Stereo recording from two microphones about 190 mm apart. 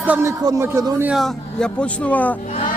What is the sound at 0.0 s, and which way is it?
A man's voice, 10° right (ahead or behind).